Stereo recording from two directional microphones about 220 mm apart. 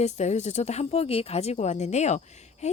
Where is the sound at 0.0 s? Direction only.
30° left (ahead or behind).